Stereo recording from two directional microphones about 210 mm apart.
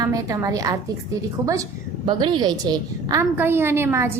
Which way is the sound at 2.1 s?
20° right (ahead or behind).